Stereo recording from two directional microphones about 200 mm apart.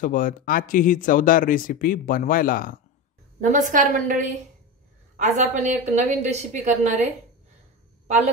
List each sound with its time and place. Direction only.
0.0 s speech: 45° left (ahead or behind)
3.3 s a woman's voice: 40° right (ahead or behind)